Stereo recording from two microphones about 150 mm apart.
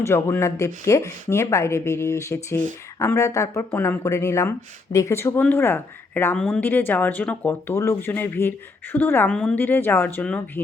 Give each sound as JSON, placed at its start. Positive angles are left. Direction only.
{"t": 0.0, "sound": "speech", "side_deg": 15}